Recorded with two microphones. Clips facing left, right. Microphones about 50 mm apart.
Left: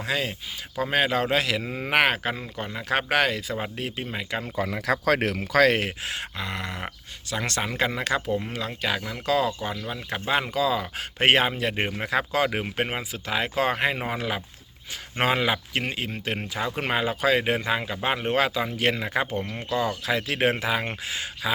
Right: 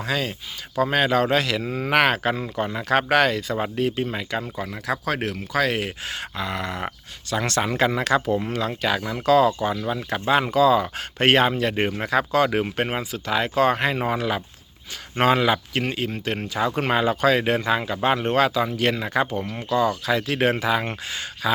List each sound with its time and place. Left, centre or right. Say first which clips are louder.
0.0 s a man's voice: right 2 dB; centre
2.4 s speech: right 7 dB; centre
3.1 s a man's voice: right 4 dB; centre
4.5 s speech: left 3 dB; left
4.9 s speech: left 2 dB; left
6.1 s a man's voice: right 3 dB; centre
11.2 s a man's voice: right 3 dB; centre
12.0 s a man's voice: right 4 dB; centre